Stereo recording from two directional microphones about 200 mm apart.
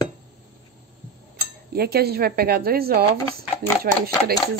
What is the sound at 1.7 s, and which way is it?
Speech, 50° right (ahead or behind).